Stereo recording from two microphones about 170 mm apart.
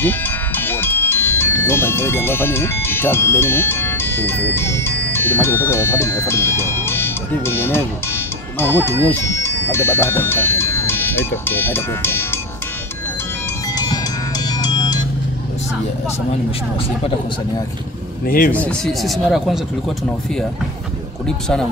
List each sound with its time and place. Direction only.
0.6 s speech: 10° left (ahead or behind)
14.6 s music: 25° left (ahead or behind)
18.2 s speech: 55° left (ahead or behind)
18.5 s speech: 5° left (ahead or behind)